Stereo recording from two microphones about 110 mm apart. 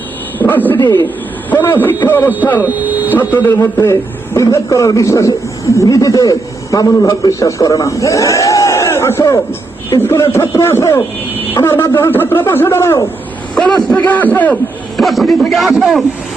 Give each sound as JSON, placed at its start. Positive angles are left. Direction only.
{"t": 0.3, "sound": "a man's voice", "side_deg": 15}
{"t": 2.6, "sound": "speech", "side_deg": -15}
{"t": 3.6, "sound": "a man's voice", "side_deg": 25}
{"t": 14.9, "sound": "a man's voice", "side_deg": 0}